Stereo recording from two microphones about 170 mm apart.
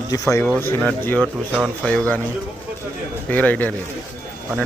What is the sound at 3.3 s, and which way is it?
Speech, 10° left (ahead or behind).